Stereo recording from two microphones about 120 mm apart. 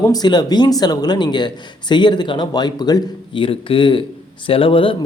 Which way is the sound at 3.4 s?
45° left (ahead or behind).